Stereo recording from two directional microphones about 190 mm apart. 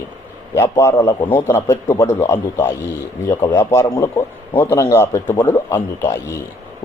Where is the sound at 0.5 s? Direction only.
15° left (ahead or behind).